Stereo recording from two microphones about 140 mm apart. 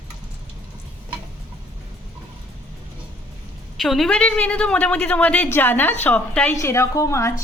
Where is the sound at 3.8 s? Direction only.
Centre (ahead or behind).